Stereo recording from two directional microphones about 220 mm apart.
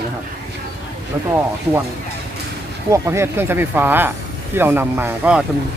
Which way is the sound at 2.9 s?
15° right (ahead or behind).